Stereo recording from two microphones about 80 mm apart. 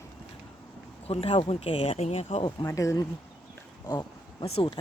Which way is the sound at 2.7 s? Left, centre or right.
Left.